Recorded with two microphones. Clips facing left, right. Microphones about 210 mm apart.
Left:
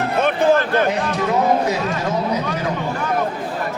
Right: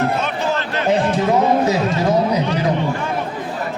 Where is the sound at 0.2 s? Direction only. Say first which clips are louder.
Left 6 dB; 55° left (ahead or behind).